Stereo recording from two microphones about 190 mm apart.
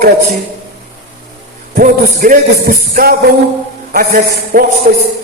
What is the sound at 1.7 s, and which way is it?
A man's voice, 45° right (ahead or behind).